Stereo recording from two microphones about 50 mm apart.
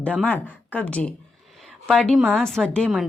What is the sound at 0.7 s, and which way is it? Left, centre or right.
Speech, left.